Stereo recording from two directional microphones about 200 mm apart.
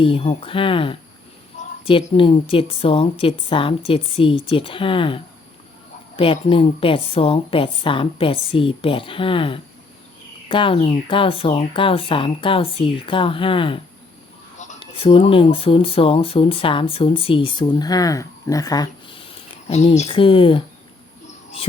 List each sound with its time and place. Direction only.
0.0 s a woman's voice: 25° left (ahead or behind)
1.6 s a sound: 35° left (ahead or behind)
1.9 s a woman's voice: 25° left (ahead or behind)